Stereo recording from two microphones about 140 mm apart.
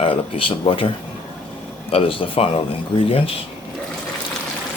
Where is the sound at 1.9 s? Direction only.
40° left (ahead or behind).